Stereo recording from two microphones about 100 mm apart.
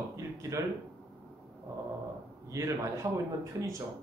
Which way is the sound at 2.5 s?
30° right (ahead or behind).